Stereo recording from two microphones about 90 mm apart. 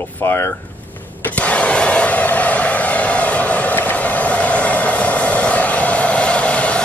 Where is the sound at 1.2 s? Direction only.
15° left (ahead or behind).